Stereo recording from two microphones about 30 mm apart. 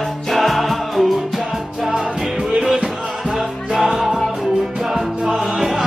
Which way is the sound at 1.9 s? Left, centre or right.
Right.